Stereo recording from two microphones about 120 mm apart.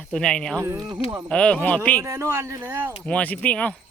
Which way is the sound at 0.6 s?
25° right (ahead or behind).